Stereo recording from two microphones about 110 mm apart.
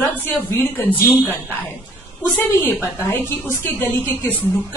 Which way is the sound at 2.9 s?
20° left (ahead or behind).